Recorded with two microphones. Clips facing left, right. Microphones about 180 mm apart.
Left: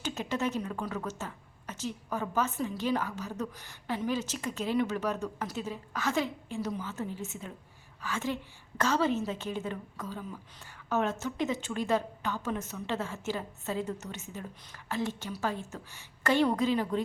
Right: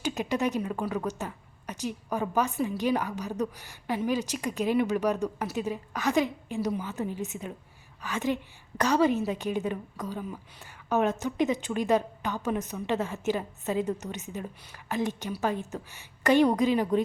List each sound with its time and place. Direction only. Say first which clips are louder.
0.0 s a woman's voice: right 4 dB; 15° right (ahead or behind)